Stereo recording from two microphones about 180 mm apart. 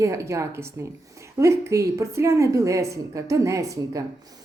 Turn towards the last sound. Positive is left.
turn(degrees=-15)  # may be behind; listen again after turning